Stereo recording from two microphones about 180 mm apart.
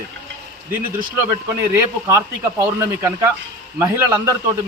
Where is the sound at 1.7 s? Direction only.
15° right (ahead or behind).